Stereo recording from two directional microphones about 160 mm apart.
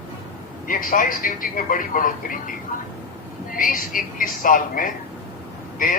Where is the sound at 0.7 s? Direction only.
60° left (ahead or behind).